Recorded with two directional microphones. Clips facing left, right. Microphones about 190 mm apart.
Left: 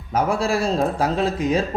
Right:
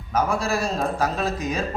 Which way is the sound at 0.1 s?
30° left (ahead or behind).